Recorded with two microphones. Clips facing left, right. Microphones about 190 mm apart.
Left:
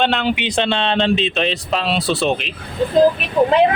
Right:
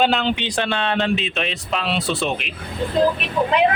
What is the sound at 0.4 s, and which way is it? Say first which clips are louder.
Speech: left 3 dB; 25° left (ahead or behind).